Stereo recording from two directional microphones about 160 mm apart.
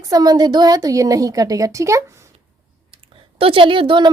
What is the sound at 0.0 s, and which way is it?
A woman's voice, 25° right (ahead or behind).